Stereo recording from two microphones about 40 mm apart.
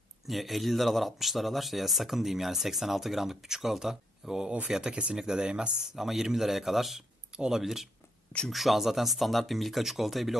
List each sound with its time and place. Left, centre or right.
0.3 s speech: centre
4.9 s speech: right
5.9 s a man's voice: centre